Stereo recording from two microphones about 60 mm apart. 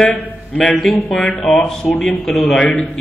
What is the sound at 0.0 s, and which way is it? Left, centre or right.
Speech, centre.